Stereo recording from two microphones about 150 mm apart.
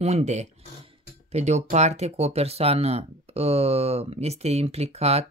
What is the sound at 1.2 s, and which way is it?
Speech, 50° right (ahead or behind).